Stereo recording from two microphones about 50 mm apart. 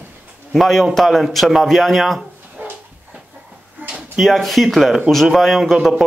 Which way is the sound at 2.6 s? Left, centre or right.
Right.